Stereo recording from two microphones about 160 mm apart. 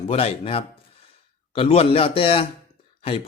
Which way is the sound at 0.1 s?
40° left (ahead or behind).